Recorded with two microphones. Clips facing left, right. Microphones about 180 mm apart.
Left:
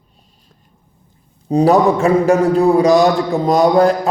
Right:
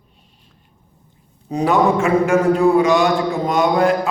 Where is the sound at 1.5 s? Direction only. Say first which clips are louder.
Left 4 dB; 35° left (ahead or behind).